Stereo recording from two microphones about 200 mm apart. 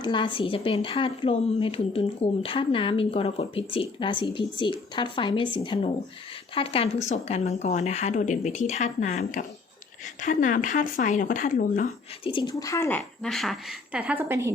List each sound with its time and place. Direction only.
0.0 s a woman's voice: 25° left (ahead or behind); by 11.9 s 40° left (ahead or behind)
12.2 s speech: 25° left (ahead or behind)
13.0 s a woman's voice: centre (ahead or behind)